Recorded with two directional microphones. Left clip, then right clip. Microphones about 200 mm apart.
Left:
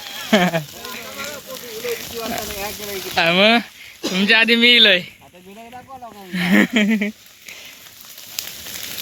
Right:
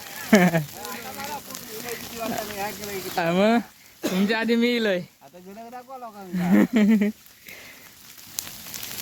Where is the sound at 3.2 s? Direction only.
5° right (ahead or behind).